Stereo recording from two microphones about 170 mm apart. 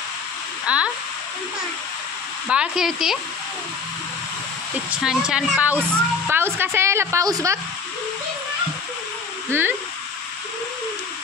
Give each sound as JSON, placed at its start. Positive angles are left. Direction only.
{"t": 0.7, "sound": "a woman's voice", "side_deg": -5}
{"t": 2.4, "sound": "a woman's voice", "side_deg": -5}
{"t": 4.9, "sound": "a woman's voice", "side_deg": -5}
{"t": 9.5, "sound": "a woman's voice", "side_deg": -10}